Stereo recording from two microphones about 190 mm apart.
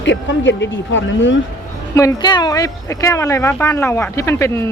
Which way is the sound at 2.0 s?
20° left (ahead or behind).